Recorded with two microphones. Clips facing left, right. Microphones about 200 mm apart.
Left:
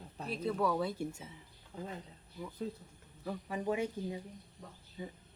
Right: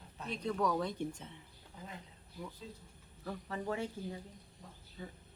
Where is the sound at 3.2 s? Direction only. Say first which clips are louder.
Left 3 dB; 15° left (ahead or behind).